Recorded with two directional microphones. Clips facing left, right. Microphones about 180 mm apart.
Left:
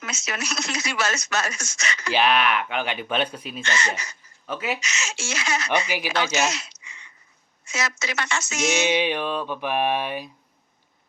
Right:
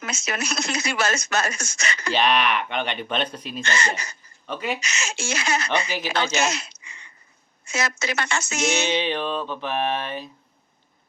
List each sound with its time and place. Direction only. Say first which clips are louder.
0.0 s speech: right 3 dB; 55° right (ahead or behind)
2.1 s speech: left 1 dB; 5° left (ahead or behind)
3.8 s speech: right 1 dB; 30° right (ahead or behind)
4.4 s speech: even; 5° left (ahead or behind)
4.8 s speech: right 2 dB; 55° right (ahead or behind)
8.9 s speech: left 1 dB; 10° left (ahead or behind)